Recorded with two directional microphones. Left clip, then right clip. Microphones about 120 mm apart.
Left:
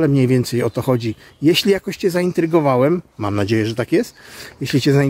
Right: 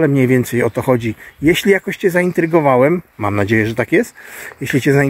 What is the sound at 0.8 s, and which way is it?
Speech, 30° left (ahead or behind).